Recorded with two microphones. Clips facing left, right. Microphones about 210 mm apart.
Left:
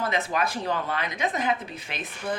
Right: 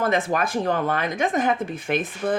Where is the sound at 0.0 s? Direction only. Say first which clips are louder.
Right 5 dB; 50° right (ahead or behind).